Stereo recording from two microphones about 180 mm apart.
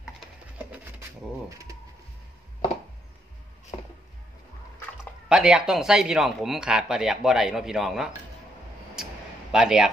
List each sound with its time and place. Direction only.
5.3 s speech: 5° right (ahead or behind)
9.5 s speech: 5° right (ahead or behind)